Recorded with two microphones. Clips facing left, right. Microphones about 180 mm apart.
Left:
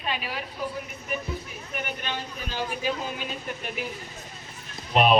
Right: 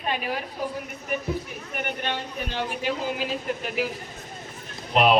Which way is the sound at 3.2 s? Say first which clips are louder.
Right 5 dB; 90° right.